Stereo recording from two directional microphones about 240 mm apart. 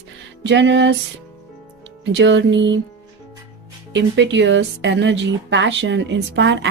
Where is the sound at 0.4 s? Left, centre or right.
Right.